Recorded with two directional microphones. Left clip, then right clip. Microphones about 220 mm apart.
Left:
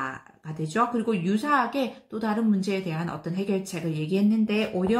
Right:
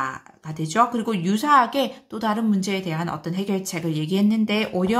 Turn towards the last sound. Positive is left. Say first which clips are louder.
# right 3 dB
turn(degrees=-35)  # may be behind; listen again after turning